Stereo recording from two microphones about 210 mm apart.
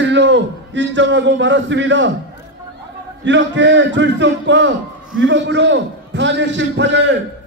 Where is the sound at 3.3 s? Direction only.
60° right (ahead or behind).